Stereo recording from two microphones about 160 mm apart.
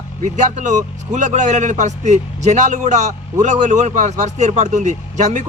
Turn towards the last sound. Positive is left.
turn(degrees=-45)  # may be behind; listen again after turning